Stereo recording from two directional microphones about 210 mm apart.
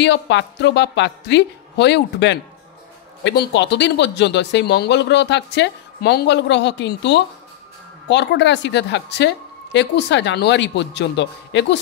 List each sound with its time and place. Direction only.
0.0 s speech: 55° left (ahead or behind)